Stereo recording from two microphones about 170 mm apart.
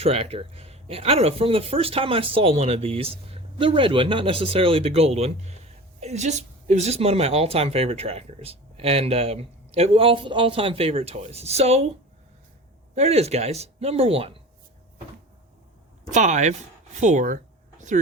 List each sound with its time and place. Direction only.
0.0 s a woman's voice: 35° right (ahead or behind)
13.0 s a woman's voice: 40° right (ahead or behind)
16.1 s speech: 45° right (ahead or behind)
17.0 s a sound: 45° right (ahead or behind)